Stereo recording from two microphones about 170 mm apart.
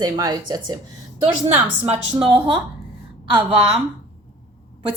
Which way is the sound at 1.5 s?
35° right (ahead or behind).